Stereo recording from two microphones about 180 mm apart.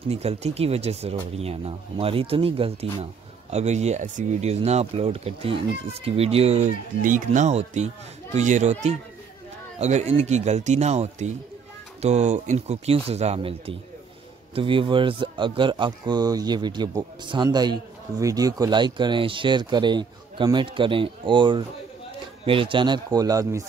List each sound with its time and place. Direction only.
0.1 s speech: 35° right (ahead or behind); by 23.6 s 20° right (ahead or behind)